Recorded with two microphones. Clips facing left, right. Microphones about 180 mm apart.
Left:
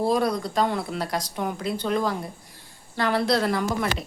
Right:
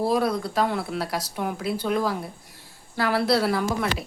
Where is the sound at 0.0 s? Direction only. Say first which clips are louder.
Even; 5° right (ahead or behind).